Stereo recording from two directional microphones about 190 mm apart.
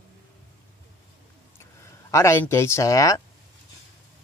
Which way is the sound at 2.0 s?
15° left (ahead or behind).